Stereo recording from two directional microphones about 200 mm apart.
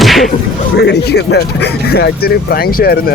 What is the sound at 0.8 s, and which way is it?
Speech, 55° left (ahead or behind).